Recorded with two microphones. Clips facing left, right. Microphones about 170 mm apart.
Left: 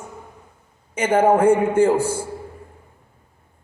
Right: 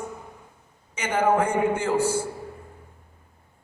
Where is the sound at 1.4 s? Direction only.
55° left (ahead or behind).